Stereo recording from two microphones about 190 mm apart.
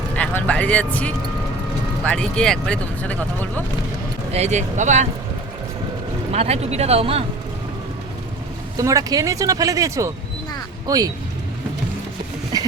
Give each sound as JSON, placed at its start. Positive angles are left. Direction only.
{"t": 0.2, "sound": "speech", "side_deg": 5}
{"t": 4.3, "sound": "speech", "side_deg": -35}
{"t": 6.3, "sound": "speech", "side_deg": -35}
{"t": 8.8, "sound": "speech", "side_deg": -15}
{"t": 12.5, "sound": "a sound", "side_deg": -20}